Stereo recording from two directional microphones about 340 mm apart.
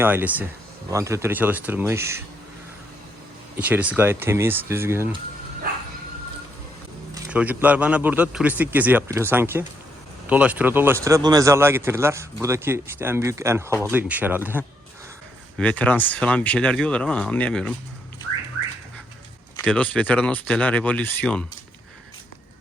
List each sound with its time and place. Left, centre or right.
0.0 s a man's voice: centre
3.6 s speech: centre
7.1 s a man's voice: centre
19.5 s a man's voice: centre